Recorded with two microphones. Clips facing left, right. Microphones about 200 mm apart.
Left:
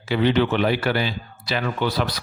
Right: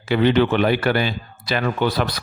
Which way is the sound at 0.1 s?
55° right (ahead or behind).